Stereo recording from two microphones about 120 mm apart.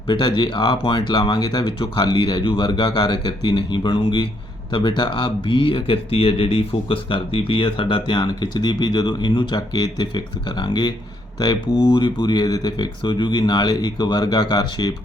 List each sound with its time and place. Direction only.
0.1 s speech: 40° left (ahead or behind)